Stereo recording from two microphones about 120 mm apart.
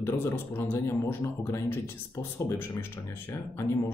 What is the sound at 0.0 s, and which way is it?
Speech, 20° left (ahead or behind).